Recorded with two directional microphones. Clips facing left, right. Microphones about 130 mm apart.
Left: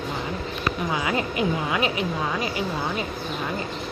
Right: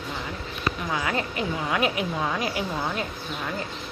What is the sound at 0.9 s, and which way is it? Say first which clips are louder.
Speech: left 2 dB; 15° left (ahead or behind).